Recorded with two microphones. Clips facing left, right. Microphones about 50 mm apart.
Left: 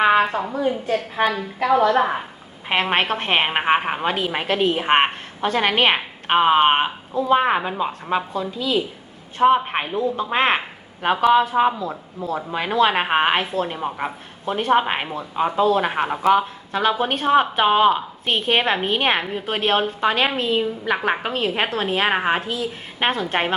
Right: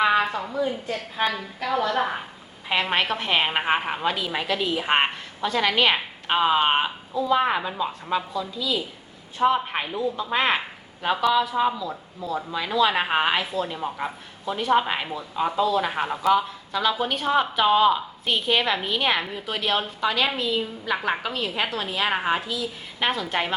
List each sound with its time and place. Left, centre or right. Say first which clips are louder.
0.0 s a sound: left 4 dB; left
1.2 s a woman's voice: left 4 dB; left
1.5 s a woman's voice: left 9 dB; left